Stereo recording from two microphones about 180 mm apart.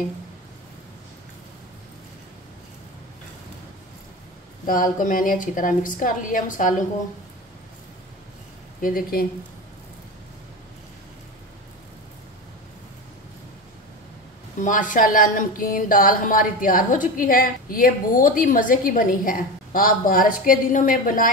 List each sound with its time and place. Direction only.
4.6 s speech: 50° left (ahead or behind)
8.8 s speech: 50° left (ahead or behind)
14.6 s speech: 45° left (ahead or behind)